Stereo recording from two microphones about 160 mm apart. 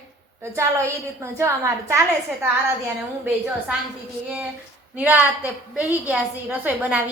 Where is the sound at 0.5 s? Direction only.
15° right (ahead or behind).